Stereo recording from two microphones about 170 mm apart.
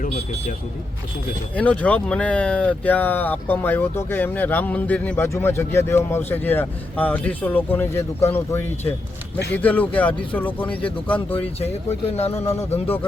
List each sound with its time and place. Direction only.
1.5 s speech: 10° left (ahead or behind)
11.3 s speech: 30° left (ahead or behind)